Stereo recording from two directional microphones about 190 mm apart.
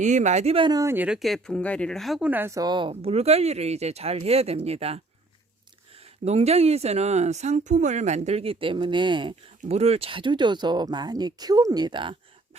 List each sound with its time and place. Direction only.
0.0 s speech: 40° right (ahead or behind)
6.2 s speech: 35° right (ahead or behind)